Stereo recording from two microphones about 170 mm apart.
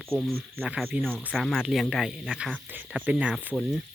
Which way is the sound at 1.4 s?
Centre (ahead or behind).